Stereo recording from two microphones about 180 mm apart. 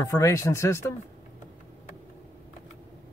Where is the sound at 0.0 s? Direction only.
15° left (ahead or behind).